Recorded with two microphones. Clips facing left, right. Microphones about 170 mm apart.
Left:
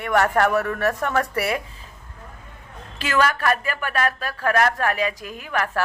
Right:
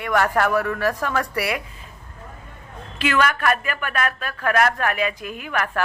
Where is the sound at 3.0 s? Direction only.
35° left (ahead or behind).